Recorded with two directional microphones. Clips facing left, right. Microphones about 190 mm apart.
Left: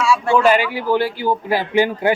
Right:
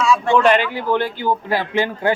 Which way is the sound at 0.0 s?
5° left (ahead or behind).